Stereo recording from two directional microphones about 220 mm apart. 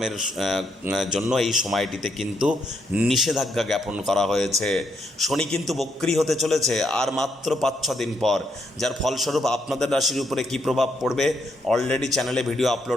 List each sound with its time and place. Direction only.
0.0 s speech: centre (ahead or behind)